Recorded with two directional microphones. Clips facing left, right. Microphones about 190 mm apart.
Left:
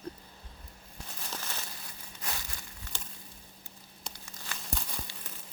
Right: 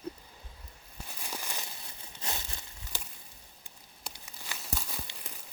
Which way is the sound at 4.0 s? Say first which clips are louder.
Even; 10° right (ahead or behind).